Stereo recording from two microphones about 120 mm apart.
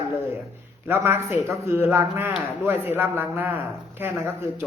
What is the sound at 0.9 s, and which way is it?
A man's voice, 20° right (ahead or behind).